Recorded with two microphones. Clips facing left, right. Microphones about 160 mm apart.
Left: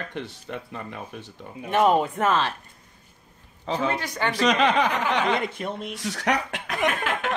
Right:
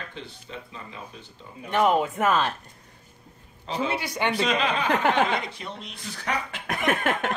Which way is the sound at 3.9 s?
10° right (ahead or behind).